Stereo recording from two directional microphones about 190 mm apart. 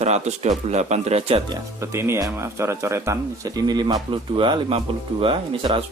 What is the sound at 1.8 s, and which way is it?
Speech, 15° right (ahead or behind).